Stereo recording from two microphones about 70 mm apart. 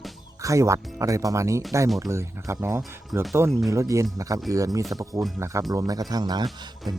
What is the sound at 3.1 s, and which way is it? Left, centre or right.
Speech, right.